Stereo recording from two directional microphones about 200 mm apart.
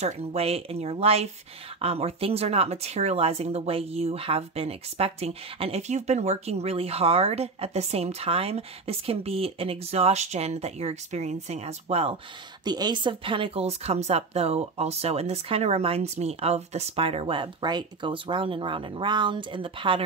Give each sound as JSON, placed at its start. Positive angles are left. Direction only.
{"t": 0.0, "sound": "speech", "side_deg": -30}